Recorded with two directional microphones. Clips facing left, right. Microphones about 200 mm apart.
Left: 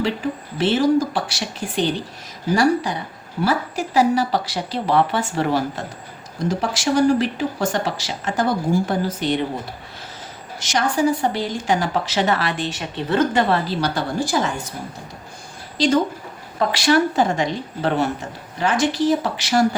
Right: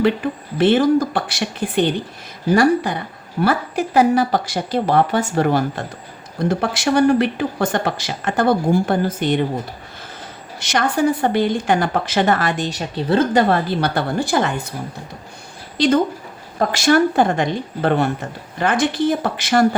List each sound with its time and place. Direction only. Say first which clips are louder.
0.0 s a woman's voice: right 5 dB; 55° right (ahead or behind)
10.6 s speech: right 1 dB; 60° right (ahead or behind); by 13.4 s 35° right (ahead or behind)
13.5 s speech: right 2 dB; 55° right (ahead or behind)
16.6 s speech: right 2 dB; 45° right (ahead or behind)